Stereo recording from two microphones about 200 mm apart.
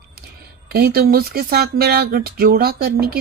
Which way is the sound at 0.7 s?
50° right (ahead or behind).